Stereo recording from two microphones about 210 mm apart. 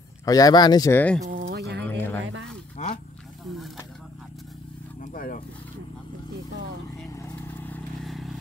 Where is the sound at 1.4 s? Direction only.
50° right (ahead or behind).